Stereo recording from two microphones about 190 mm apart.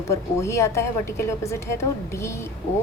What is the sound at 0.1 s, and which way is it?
A woman's voice, 15° left (ahead or behind).